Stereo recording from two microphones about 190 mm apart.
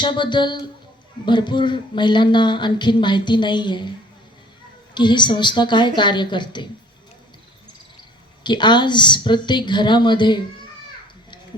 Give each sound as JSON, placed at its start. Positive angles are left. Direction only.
{"t": 0.0, "sound": "speech", "side_deg": 25}
{"t": 4.9, "sound": "speech", "side_deg": 25}
{"t": 8.4, "sound": "speech", "side_deg": 25}